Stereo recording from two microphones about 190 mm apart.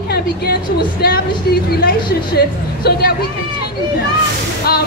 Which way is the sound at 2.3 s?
55° left (ahead or behind).